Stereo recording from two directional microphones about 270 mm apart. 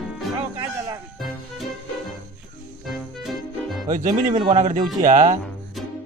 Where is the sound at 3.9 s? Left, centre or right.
Right.